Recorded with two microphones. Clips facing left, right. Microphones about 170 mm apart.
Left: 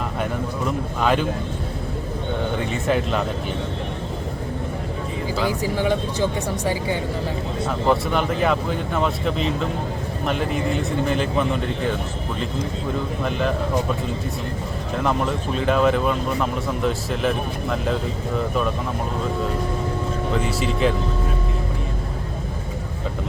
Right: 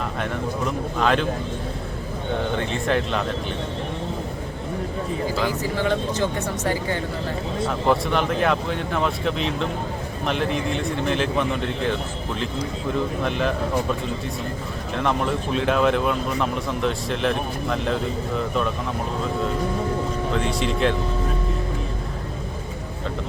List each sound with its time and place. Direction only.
0.9 s speech: 5° left (ahead or behind)
2.8 s speech: 5° left (ahead or behind)
5.5 s speech: 15° left (ahead or behind)
7.9 s speech: centre (ahead or behind)
13.2 s speech: centre (ahead or behind)
14.9 s speech: centre (ahead or behind)
20.3 s speech: 5° left (ahead or behind)